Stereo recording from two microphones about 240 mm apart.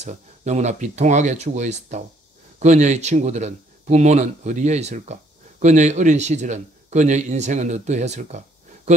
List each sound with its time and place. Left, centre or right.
0.0 s a man's voice: right